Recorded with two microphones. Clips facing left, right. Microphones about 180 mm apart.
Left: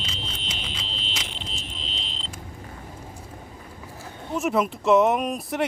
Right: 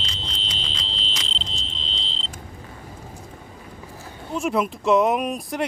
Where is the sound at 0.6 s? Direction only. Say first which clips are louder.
Right 1 dB; 10° left (ahead or behind).